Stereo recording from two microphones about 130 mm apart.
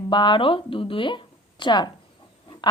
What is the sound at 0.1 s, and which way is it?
Speech, 35° left (ahead or behind).